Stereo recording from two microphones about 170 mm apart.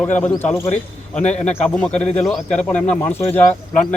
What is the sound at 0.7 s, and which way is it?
Speech, 45° left (ahead or behind).